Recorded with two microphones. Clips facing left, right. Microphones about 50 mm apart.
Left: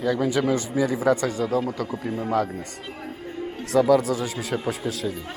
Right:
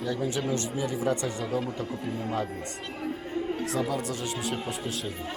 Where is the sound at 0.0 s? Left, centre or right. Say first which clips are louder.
Left 7 dB; left.